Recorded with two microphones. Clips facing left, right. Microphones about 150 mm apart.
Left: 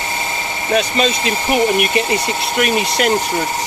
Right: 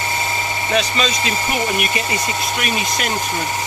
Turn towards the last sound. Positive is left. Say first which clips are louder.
# left 6 dB
turn(degrees=65)  # may be behind; listen again after turning